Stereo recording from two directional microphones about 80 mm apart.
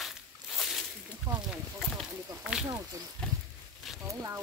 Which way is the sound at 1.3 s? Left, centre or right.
Right.